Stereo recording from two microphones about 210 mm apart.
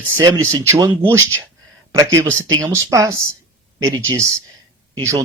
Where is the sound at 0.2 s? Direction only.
15° right (ahead or behind).